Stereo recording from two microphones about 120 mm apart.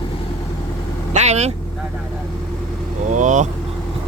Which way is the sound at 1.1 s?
70° right (ahead or behind).